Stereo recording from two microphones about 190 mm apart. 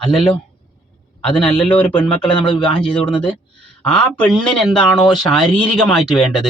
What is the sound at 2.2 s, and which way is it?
Speech, 25° left (ahead or behind).